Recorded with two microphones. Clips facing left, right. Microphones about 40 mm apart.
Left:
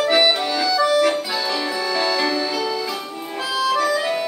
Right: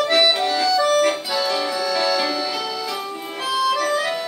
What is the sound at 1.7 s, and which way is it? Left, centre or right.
Music, left.